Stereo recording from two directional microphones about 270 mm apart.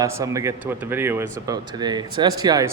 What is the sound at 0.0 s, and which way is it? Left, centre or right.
Speech, centre.